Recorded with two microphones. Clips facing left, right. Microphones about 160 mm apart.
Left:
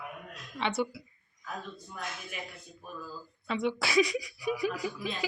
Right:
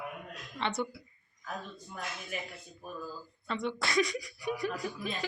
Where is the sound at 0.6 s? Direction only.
5° left (ahead or behind).